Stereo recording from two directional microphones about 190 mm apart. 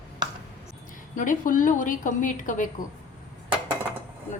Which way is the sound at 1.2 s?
45° left (ahead or behind).